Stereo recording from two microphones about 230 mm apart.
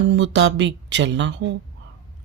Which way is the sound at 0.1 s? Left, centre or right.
Right.